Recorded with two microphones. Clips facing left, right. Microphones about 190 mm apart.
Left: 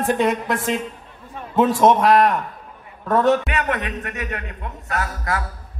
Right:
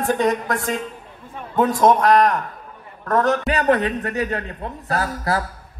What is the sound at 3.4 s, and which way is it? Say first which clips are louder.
A man's voice: right 6 dB; 35° right (ahead or behind).